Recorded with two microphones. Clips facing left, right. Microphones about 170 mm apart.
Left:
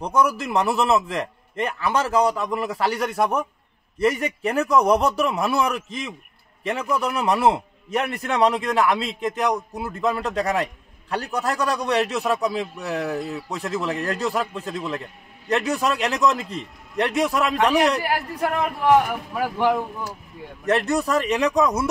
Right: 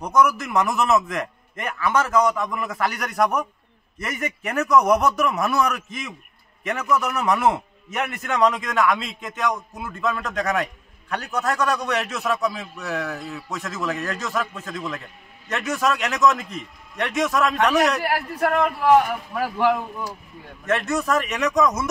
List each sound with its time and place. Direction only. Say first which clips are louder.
0.0 s a man's voice: right 1 dB; 30° left (ahead or behind)
19.3 s speech: even; 15° left (ahead or behind)
20.6 s a man's voice: left 2 dB; 35° left (ahead or behind)